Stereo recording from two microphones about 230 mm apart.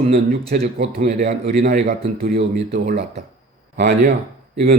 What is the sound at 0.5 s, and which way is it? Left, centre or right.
A man's voice, right.